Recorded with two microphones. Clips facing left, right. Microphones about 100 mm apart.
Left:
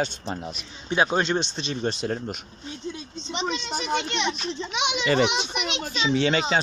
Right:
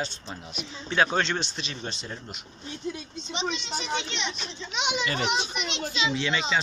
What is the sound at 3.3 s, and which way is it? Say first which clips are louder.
A child's voice: left 3 dB; 45° left (ahead or behind).